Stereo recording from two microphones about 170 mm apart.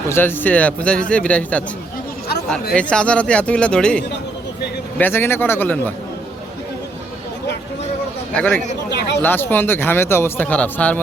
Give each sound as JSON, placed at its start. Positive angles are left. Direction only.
{"t": 0.1, "sound": "speech", "side_deg": 10}
{"t": 2.7, "sound": "speech", "side_deg": 5}
{"t": 8.4, "sound": "speech", "side_deg": 5}
{"t": 8.9, "sound": "speech", "side_deg": 80}
{"t": 9.2, "sound": "speech", "side_deg": 10}